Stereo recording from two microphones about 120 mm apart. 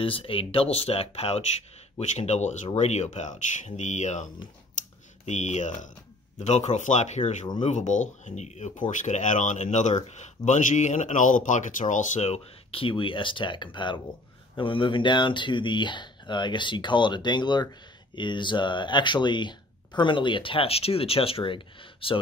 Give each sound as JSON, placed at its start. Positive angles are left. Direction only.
{"t": 0.0, "sound": "speech", "side_deg": 50}
{"t": 2.0, "sound": "speech", "side_deg": 70}
{"t": 6.4, "sound": "speech", "side_deg": 75}
{"t": 7.6, "sound": "speech", "side_deg": 90}